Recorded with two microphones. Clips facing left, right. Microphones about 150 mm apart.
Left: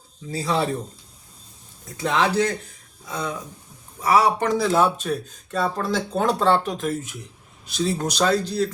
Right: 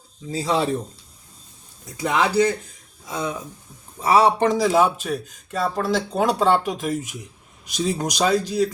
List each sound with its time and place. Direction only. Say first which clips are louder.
0.3 s speech: right 2 dB; 20° right (ahead or behind)
2.0 s speech: right 2 dB; 10° right (ahead or behind)